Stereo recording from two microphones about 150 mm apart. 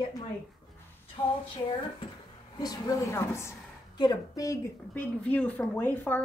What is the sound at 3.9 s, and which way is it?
Speech, 30° left (ahead or behind).